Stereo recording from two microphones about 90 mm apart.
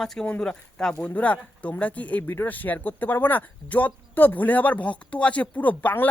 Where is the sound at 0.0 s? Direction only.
5° left (ahead or behind).